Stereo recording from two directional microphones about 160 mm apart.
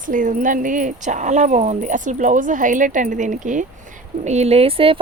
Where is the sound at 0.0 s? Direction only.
55° right (ahead or behind).